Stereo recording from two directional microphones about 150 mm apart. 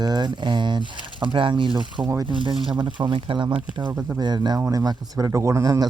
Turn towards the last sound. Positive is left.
turn(degrees=-20)  # may be behind; listen again after turning